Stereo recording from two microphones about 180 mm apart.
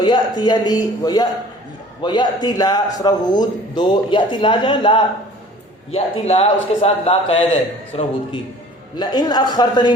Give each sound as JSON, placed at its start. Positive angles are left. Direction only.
{"t": 0.0, "sound": "a man's voice", "side_deg": 25}